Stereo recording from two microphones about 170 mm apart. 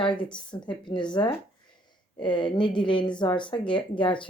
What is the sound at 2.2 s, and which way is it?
Speech, 25° left (ahead or behind).